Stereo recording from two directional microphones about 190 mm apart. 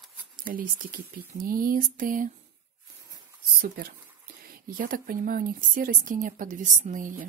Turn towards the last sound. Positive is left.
turn(degrees=-45)  # may be behind; listen again after turning